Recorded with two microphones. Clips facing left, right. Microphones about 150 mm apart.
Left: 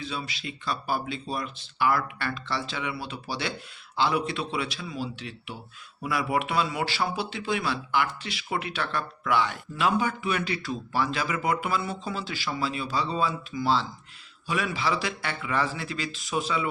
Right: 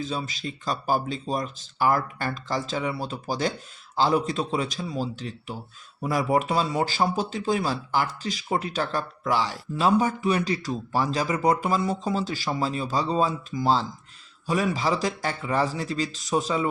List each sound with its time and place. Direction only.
0.0 s speech: 40° right (ahead or behind)